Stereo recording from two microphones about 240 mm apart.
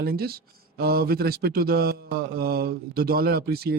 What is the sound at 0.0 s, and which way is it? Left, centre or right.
Mantra, right.